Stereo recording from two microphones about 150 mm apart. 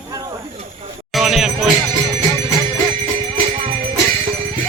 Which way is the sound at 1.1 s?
Centre (ahead or behind).